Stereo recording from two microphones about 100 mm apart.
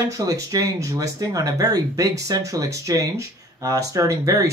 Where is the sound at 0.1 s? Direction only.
35° right (ahead or behind).